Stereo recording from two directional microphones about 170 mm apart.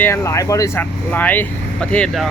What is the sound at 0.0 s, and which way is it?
Speech, 15° left (ahead or behind).